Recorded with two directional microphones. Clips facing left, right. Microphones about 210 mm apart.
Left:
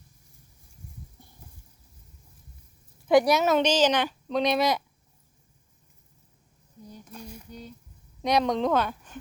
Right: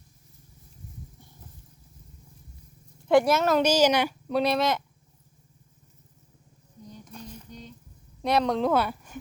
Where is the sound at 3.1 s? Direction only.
Centre (ahead or behind).